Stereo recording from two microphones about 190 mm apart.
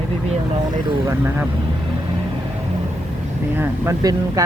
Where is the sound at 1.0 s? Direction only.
10° right (ahead or behind).